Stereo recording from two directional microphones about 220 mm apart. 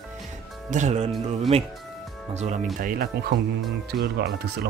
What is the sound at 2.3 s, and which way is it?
Speech, 30° right (ahead or behind).